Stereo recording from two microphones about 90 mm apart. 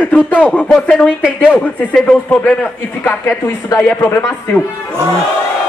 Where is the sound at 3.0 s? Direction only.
30° left (ahead or behind).